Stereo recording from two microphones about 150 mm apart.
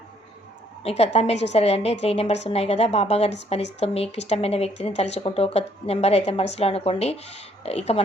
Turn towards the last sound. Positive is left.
turn(degrees=45)  # may be behind; listen again after turning